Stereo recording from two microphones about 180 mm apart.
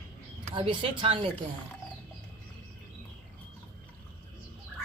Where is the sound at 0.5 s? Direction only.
30° right (ahead or behind).